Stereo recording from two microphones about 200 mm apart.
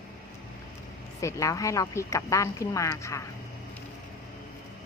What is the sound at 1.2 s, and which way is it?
A woman's voice, 15° left (ahead or behind).